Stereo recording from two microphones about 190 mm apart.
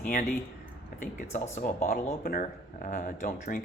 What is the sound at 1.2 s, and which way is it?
Speech, 40° left (ahead or behind).